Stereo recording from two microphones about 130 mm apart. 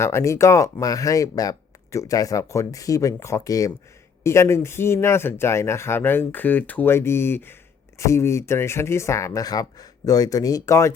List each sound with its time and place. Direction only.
0.0 s speech: 20° left (ahead or behind)